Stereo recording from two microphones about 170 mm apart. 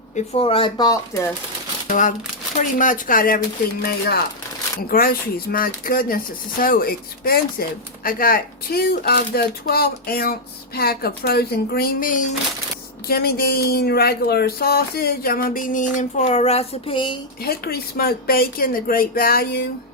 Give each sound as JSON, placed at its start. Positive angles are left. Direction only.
{"t": 0.3, "sound": "speech", "side_deg": 35}
{"t": 1.9, "sound": "speech", "side_deg": 50}
{"t": 13.1, "sound": "speech", "side_deg": 65}
{"t": 17.4, "sound": "speech", "side_deg": 65}